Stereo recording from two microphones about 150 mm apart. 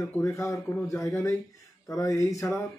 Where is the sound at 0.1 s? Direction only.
20° left (ahead or behind).